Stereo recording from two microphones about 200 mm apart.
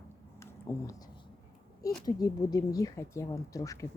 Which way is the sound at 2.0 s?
20° left (ahead or behind).